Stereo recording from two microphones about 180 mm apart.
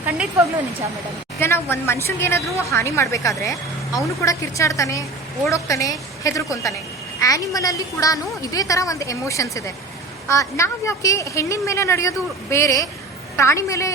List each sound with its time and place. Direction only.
0.0 s speech: 10° right (ahead or behind)
1.4 s a woman's voice: 15° left (ahead or behind)